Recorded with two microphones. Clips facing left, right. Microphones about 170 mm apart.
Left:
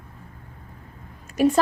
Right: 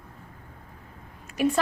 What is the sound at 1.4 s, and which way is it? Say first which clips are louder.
Speech: left 5 dB; 40° left (ahead or behind).